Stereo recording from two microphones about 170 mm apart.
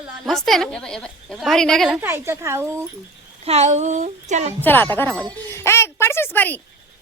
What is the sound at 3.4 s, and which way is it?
Speech, 40° right (ahead or behind).